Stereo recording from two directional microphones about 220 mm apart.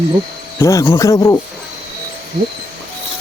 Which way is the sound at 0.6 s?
15° left (ahead or behind).